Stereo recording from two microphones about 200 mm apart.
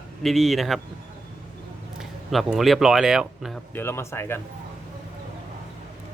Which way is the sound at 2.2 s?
Centre (ahead or behind).